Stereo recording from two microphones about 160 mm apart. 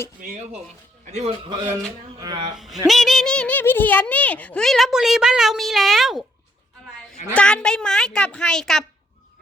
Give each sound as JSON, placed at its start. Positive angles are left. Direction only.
{"t": 0.2, "sound": "a man's voice", "side_deg": -50}
{"t": 2.1, "sound": "speech", "side_deg": -25}
{"t": 2.6, "sound": "speech", "side_deg": 0}
{"t": 7.3, "sound": "speech", "side_deg": 5}